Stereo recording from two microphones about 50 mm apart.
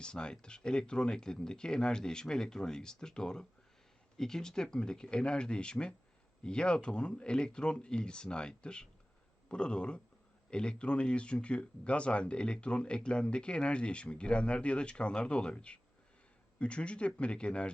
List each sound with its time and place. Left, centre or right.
0.0 s speech: centre